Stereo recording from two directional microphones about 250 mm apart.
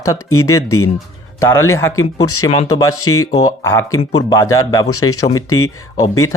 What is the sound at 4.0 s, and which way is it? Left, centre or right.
Speech, left.